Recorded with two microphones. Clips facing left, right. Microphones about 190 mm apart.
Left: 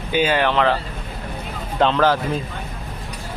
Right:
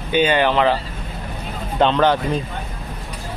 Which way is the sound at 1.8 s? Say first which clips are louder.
Right 1 dB; centre (ahead or behind).